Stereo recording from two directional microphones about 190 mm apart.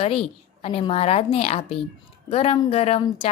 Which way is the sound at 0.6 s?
30° left (ahead or behind).